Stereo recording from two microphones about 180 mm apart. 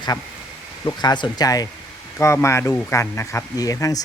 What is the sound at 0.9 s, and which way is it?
Speech, 25° left (ahead or behind).